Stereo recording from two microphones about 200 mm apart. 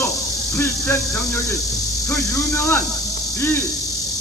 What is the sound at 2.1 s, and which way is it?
Speech, 15° left (ahead or behind).